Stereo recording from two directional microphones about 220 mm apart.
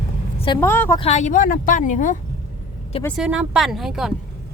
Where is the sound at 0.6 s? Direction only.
10° left (ahead or behind).